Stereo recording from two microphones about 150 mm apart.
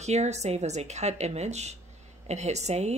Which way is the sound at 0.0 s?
50° right (ahead or behind).